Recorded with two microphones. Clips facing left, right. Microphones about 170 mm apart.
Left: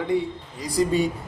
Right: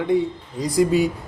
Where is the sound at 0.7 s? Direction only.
10° right (ahead or behind).